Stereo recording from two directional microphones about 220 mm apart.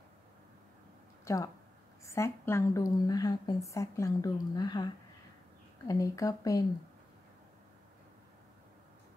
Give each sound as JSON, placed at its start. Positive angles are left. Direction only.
{"t": 1.2, "sound": "a woman's voice", "side_deg": 15}